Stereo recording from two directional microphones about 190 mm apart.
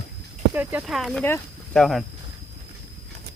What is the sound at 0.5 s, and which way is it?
Speech, 10° right (ahead or behind).